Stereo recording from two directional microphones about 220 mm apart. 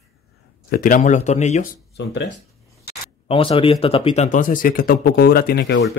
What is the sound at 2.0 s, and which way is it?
Speech, 55° left (ahead or behind).